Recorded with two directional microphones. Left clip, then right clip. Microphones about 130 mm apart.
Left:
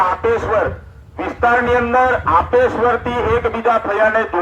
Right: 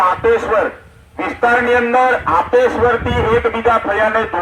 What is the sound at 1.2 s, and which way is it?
A man's voice, 35° right (ahead or behind).